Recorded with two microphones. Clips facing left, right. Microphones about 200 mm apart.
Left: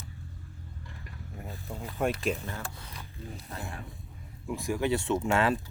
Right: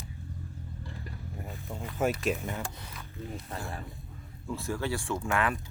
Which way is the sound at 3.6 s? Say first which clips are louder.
Right 1 dB; centre (ahead or behind).